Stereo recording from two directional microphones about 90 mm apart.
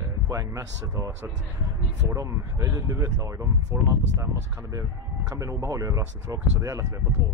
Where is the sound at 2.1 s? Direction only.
35° right (ahead or behind).